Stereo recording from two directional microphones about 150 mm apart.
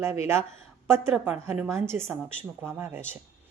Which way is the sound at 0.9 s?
15° right (ahead or behind).